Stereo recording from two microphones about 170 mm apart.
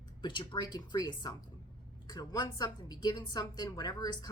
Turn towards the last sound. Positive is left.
turn(degrees=25)  # may be behind; listen again after turning